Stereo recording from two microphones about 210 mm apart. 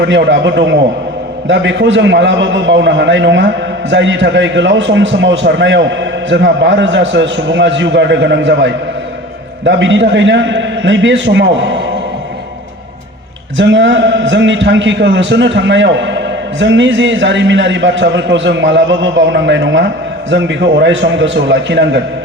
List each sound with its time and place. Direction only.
0.0 s a man's voice: 55° right (ahead or behind)
13.6 s a man's voice: 60° right (ahead or behind)